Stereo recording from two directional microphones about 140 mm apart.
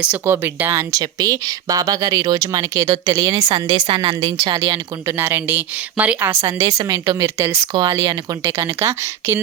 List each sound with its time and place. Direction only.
0.0 s speech: 10° right (ahead or behind)
3.5 s speech: 35° right (ahead or behind); by 6.3 s 10° right (ahead or behind)
6.4 s speech: 25° right (ahead or behind)